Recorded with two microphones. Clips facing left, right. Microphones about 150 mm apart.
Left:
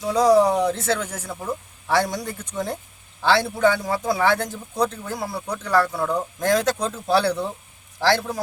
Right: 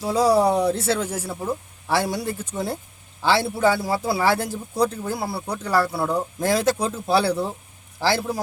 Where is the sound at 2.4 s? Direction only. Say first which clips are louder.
Even; 10° right (ahead or behind).